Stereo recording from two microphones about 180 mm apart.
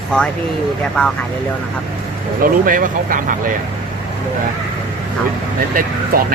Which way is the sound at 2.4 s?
50° right (ahead or behind).